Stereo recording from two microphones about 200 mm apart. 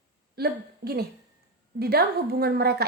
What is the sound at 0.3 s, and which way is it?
A woman's voice, 50° right (ahead or behind).